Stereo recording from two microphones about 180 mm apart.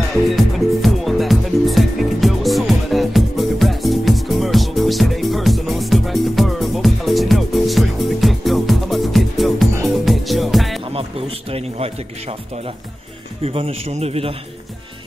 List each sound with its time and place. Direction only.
0.3 s music: centre (ahead or behind)
10.9 s a man's voice: 30° right (ahead or behind)